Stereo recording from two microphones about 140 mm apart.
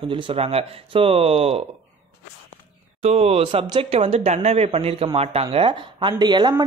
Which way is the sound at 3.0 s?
45° right (ahead or behind).